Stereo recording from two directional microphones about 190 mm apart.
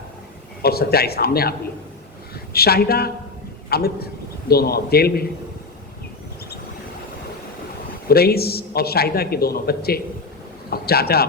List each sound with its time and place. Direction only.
0.6 s a man's voice: 55° left (ahead or behind)
8.0 s a man's voice: 55° left (ahead or behind)